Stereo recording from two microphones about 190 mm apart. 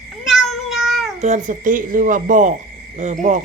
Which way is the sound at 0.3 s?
Centre (ahead or behind).